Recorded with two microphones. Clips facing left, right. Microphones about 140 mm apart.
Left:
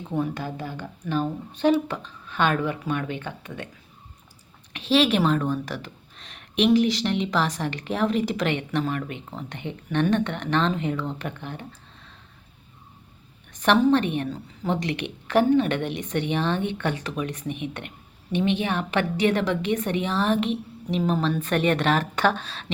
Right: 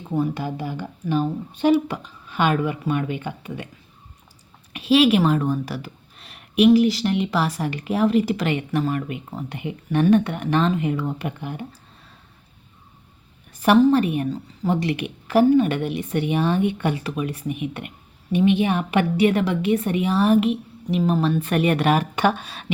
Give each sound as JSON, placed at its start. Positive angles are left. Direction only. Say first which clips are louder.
{"t": 0.1, "sound": "speech", "louder": "right 4 dB", "side_deg": -5}
{"t": 4.7, "sound": "a woman's voice", "louder": "right 4 dB", "side_deg": -5}
{"t": 13.5, "sound": "a woman's voice", "louder": "right 3 dB", "side_deg": -5}